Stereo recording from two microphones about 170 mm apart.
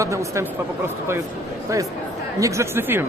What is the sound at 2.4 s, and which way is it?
Speech, 15° right (ahead or behind).